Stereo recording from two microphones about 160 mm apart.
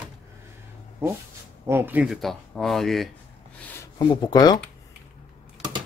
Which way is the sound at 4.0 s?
25° left (ahead or behind).